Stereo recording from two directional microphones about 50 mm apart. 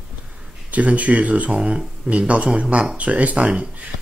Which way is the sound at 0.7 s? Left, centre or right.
Right.